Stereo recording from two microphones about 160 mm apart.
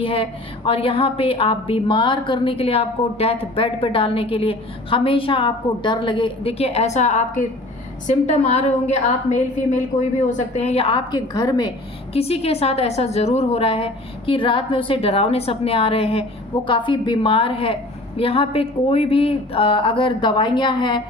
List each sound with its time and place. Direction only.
0.0 s a woman's voice: 35° left (ahead or behind)
12.1 s a woman's voice: 40° left (ahead or behind)